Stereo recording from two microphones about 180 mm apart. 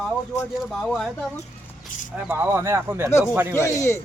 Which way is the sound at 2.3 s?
10° right (ahead or behind).